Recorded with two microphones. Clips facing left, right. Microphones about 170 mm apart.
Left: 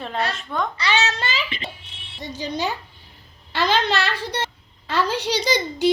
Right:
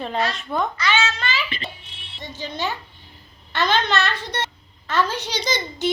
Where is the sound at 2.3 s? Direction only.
40° left (ahead or behind).